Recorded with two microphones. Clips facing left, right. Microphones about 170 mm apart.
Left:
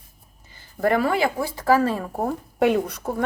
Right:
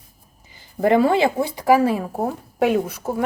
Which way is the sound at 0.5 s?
20° right (ahead or behind).